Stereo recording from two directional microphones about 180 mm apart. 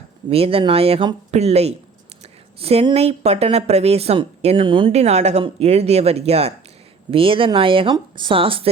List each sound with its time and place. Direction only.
0.3 s speech: 30° right (ahead or behind)